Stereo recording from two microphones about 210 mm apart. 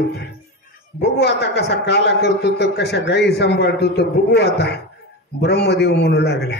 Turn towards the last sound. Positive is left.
turn(degrees=50)  # may be behind; listen again after turning